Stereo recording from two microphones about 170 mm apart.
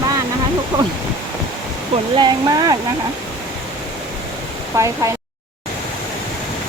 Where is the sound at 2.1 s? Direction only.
25° right (ahead or behind).